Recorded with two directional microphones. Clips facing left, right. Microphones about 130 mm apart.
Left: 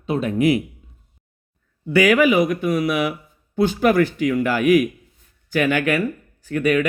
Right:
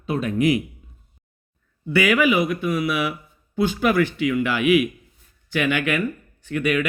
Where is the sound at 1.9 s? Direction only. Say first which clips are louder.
Left 3 dB; 40° left (ahead or behind).